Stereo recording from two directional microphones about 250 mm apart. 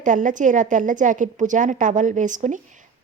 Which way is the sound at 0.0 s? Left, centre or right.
Right.